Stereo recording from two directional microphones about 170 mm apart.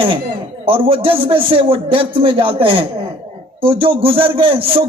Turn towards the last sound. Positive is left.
turn(degrees=-30)  # may be behind; listen again after turning